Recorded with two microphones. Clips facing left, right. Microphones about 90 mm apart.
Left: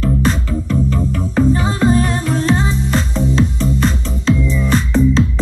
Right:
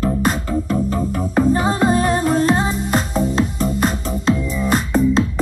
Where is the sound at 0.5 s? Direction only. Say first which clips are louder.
Left 1 dB; 40° right (ahead or behind).